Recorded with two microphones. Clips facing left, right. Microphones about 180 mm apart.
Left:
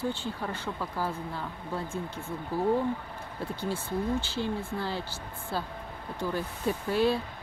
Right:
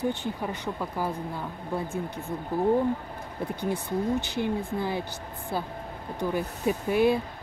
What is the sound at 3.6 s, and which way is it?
Speech, 15° right (ahead or behind).